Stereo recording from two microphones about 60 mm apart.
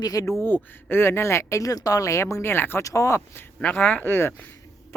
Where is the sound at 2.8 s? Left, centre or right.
Left.